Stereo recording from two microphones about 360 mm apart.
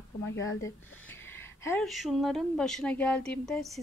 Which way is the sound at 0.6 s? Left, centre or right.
Centre.